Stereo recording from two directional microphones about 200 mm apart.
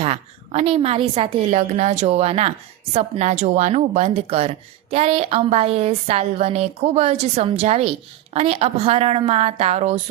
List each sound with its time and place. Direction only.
0.0 s a woman's voice: 30° right (ahead or behind)